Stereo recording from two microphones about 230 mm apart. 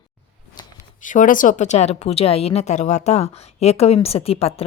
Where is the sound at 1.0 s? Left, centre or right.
Left.